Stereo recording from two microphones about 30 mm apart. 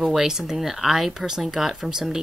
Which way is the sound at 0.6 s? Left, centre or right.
Centre.